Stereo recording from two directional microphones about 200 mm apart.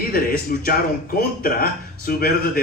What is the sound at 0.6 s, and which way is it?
A man's voice, 45° left (ahead or behind).